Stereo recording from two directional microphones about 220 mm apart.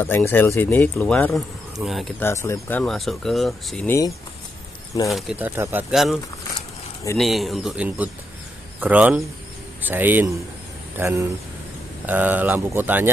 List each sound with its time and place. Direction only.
0.0 s speech: 10° left (ahead or behind)
2.2 s speech: 10° left (ahead or behind)
5.4 s speech: 10° right (ahead or behind)
7.2 s speech: centre (ahead or behind)